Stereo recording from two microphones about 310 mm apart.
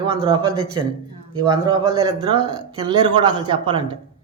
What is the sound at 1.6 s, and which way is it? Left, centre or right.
A man's voice, centre.